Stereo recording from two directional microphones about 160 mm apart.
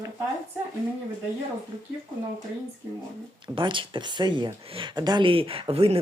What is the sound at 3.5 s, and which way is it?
Speech, 30° right (ahead or behind).